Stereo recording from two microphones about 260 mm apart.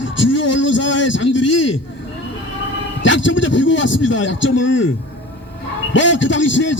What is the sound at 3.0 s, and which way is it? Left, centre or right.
A man's voice, left.